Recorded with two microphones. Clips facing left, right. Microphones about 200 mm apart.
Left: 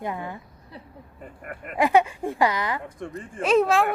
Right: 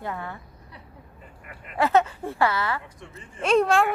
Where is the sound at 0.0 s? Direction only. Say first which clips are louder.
Left 2 dB; 15° left (ahead or behind).